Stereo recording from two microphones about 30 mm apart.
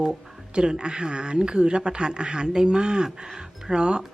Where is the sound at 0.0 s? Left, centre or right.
Right.